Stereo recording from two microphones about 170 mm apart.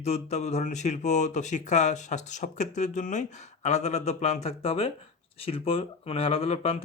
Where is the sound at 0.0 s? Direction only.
40° left (ahead or behind).